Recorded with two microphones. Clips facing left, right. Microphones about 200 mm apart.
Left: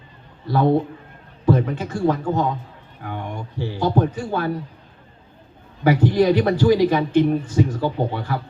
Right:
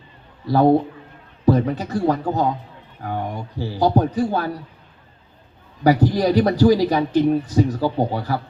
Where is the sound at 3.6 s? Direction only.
40° right (ahead or behind).